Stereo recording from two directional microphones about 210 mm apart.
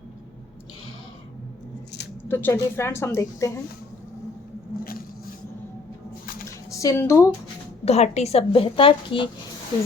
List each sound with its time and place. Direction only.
2.2 s a woman's voice: 10° left (ahead or behind)
4.8 s a sound: 45° left (ahead or behind)
6.7 s speech: 15° left (ahead or behind)
7.9 s a woman's voice: 30° left (ahead or behind)